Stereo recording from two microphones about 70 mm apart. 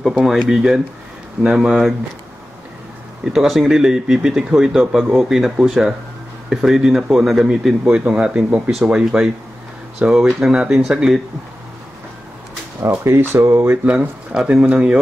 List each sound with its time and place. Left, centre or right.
0.5 s speech: centre
3.3 s speech: centre
12.8 s speech: right
13.8 s speech: centre